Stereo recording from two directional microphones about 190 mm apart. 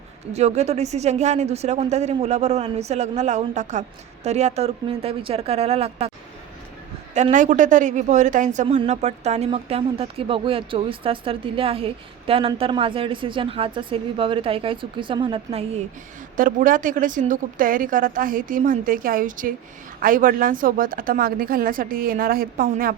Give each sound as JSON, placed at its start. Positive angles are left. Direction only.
{"t": 0.3, "sound": "speech", "side_deg": -35}
{"t": 7.1, "sound": "speech", "side_deg": -40}
{"t": 16.4, "sound": "a woman's voice", "side_deg": -45}